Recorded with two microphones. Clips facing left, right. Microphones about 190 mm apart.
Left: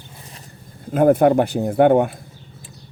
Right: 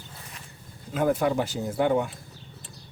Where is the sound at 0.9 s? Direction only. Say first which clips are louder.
Left 10 dB; 55° left (ahead or behind).